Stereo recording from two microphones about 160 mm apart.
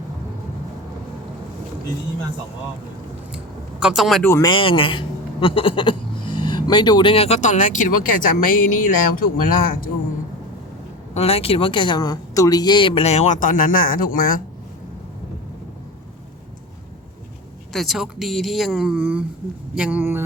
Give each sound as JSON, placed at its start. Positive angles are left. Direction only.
{"t": 3.3, "sound": "a sound", "side_deg": -5}
{"t": 4.2, "sound": "speech", "side_deg": 15}
{"t": 4.4, "sound": "speech", "side_deg": 30}
{"t": 11.1, "sound": "speech", "side_deg": 40}
{"t": 17.7, "sound": "speech", "side_deg": 0}